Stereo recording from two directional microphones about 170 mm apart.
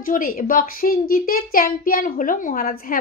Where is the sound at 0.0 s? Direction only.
55° left (ahead or behind).